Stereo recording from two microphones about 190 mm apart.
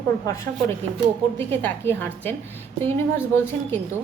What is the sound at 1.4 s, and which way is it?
A woman's voice, 10° left (ahead or behind).